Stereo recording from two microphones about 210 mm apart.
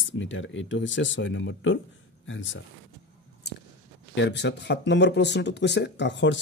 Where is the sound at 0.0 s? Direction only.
65° left (ahead or behind).